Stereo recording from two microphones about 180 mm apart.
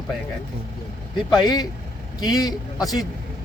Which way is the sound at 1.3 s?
25° left (ahead or behind).